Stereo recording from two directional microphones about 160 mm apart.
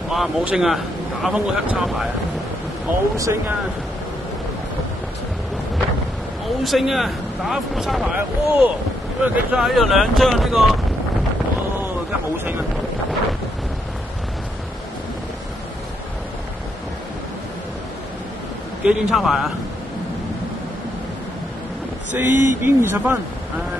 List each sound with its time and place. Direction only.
0.1 s speech: 5° right (ahead or behind)
3.2 s speech: 20° right (ahead or behind)
6.6 s speech: centre (ahead or behind)
18.9 s speech: 5° right (ahead or behind)
22.1 s speech: 15° right (ahead or behind)